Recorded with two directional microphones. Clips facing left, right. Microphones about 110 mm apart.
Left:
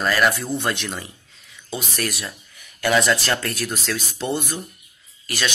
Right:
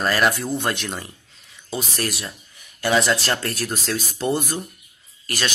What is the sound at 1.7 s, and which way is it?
Speech, 30° right (ahead or behind).